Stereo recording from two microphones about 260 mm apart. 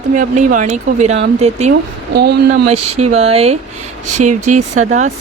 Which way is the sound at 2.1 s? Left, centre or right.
Right.